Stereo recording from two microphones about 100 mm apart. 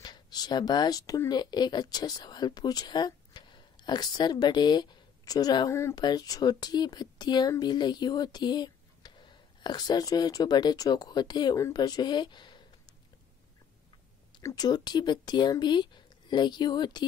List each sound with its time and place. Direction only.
0.0 s speech: 45° left (ahead or behind)
5.7 s speech: 30° left (ahead or behind)
5.9 s speech: 40° left (ahead or behind)
14.5 s speech: 40° left (ahead or behind)